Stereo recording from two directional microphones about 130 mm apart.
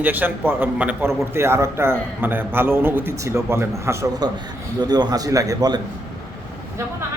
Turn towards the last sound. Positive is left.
turn(degrees=-30)  # may be behind; listen again after turning